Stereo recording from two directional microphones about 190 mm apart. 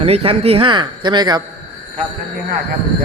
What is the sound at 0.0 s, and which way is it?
A man's voice, 30° right (ahead or behind).